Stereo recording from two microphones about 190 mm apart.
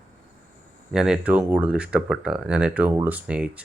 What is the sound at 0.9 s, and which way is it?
Speech, 5° right (ahead or behind).